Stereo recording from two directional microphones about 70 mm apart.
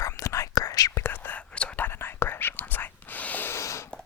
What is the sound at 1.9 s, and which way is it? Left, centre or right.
Whispering, left.